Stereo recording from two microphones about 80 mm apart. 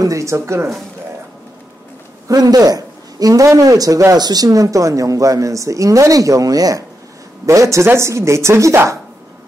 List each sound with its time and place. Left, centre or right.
0.0 s speech: right
2.2 s a man's voice: right